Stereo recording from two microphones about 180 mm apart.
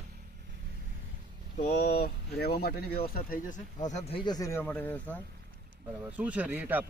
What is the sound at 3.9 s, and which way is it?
Speech, 40° left (ahead or behind).